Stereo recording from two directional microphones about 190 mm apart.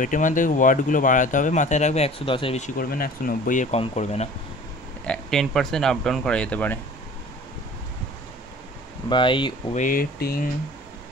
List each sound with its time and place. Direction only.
0.0 s speech: 45° left (ahead or behind)
2.8 s speech: 50° left (ahead or behind); by 4.3 s 35° left (ahead or behind)
5.0 s speech: 5° left (ahead or behind)
9.1 s speech: 25° left (ahead or behind)
9.8 s speech: 45° left (ahead or behind)